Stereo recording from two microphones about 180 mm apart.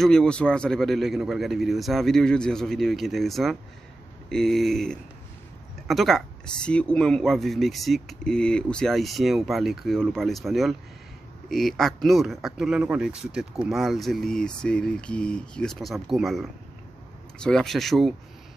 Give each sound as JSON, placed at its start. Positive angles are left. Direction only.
{"t": 0.0, "sound": "speech", "side_deg": 5}